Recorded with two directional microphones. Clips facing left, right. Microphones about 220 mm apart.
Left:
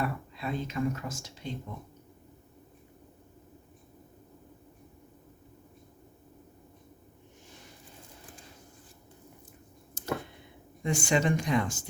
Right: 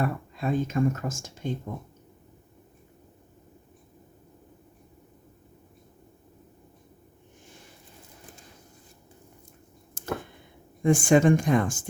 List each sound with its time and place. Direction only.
0.0 s speech: 45° right (ahead or behind)
10.0 s a sound: 50° right (ahead or behind)
10.8 s speech: 50° right (ahead or behind)